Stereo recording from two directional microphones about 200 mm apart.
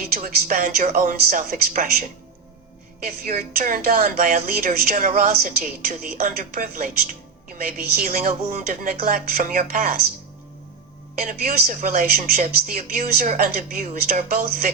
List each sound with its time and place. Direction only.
0.2 s a woman's voice: 40° right (ahead or behind)
3.2 s a woman's voice: 45° right (ahead or behind)
11.3 s a woman's voice: 40° right (ahead or behind)